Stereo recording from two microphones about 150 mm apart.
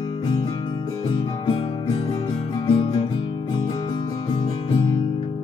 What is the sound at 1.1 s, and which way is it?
Music, 35° left (ahead or behind).